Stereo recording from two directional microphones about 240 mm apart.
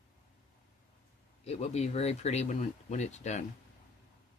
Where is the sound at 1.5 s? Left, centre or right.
Left.